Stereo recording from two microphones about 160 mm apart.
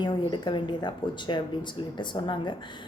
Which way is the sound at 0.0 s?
30° left (ahead or behind).